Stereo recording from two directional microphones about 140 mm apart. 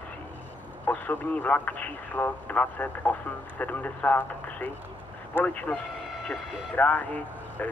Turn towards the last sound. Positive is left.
turn(degrees=10)  # may be behind; listen again after turning